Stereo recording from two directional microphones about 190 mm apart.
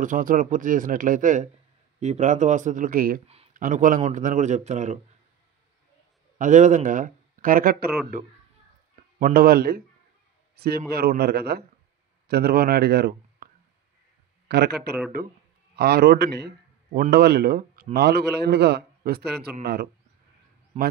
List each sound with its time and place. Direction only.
0.0 s speech: 45° right (ahead or behind)
6.3 s speech: 40° right (ahead or behind)
9.2 s speech: 55° right (ahead or behind)
10.5 s a sound: 55° right (ahead or behind)
10.9 s a man's voice: 55° right (ahead or behind)
14.5 s a man's voice: 60° right (ahead or behind)